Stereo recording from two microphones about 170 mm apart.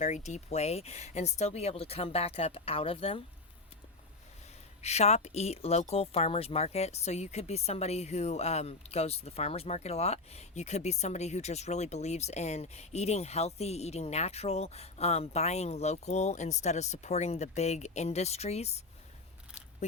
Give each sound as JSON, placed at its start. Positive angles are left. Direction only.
{"t": 0.0, "sound": "speech", "side_deg": 45}
{"t": 4.8, "sound": "speech", "side_deg": 40}